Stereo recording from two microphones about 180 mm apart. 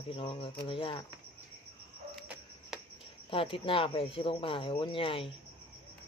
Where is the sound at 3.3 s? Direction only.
30° left (ahead or behind).